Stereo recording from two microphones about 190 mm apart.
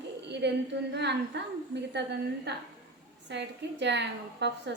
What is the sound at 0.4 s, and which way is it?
A woman's voice, 65° right (ahead or behind).